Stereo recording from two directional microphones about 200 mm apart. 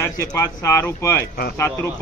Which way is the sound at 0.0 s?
15° left (ahead or behind).